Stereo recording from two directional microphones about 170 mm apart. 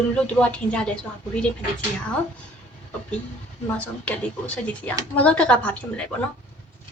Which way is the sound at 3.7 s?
5° left (ahead or behind).